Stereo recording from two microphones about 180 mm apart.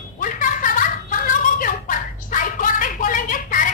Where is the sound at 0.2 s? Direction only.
45° left (ahead or behind).